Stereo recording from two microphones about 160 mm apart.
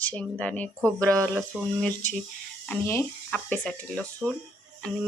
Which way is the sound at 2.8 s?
15° left (ahead or behind).